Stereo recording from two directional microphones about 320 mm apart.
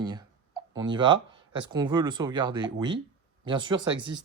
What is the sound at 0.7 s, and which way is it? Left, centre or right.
Speech, centre.